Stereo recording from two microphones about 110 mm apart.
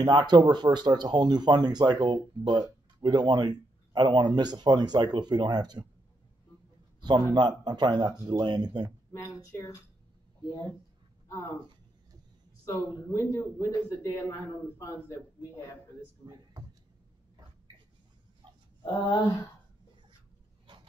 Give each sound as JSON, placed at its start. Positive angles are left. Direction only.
{"t": 0.0, "sound": "speech", "side_deg": -40}
{"t": 7.0, "sound": "a man's voice", "side_deg": -40}
{"t": 9.1, "sound": "speech", "side_deg": 30}
{"t": 12.6, "sound": "a man's voice", "side_deg": 30}
{"t": 18.9, "sound": "speech", "side_deg": 45}